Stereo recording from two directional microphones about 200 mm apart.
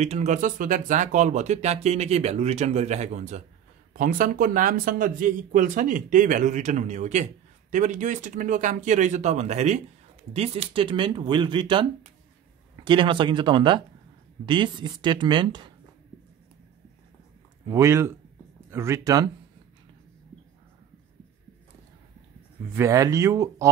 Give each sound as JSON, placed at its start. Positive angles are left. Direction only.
{"t": 0.0, "sound": "speech", "side_deg": -35}
{"t": 17.6, "sound": "speech", "side_deg": -15}
{"t": 22.7, "sound": "speech", "side_deg": -15}